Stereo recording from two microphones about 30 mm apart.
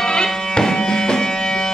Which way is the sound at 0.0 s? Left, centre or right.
Left.